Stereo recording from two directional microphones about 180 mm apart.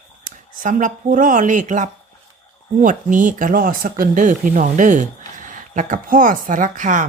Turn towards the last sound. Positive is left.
turn(degrees=-45)  # may be behind; listen again after turning